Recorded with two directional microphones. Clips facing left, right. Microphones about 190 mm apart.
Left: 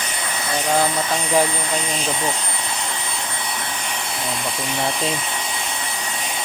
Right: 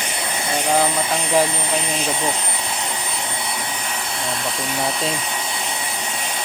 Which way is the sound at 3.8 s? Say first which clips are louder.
Even; centre (ahead or behind).